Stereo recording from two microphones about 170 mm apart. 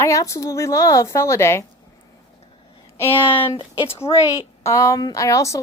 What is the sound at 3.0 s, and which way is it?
Speech, 30° left (ahead or behind).